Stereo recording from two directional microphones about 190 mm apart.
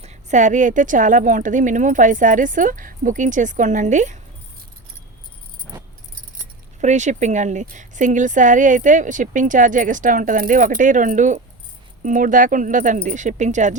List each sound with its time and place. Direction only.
0.0 s speech: 35° right (ahead or behind)
6.4 s speech: 40° right (ahead or behind)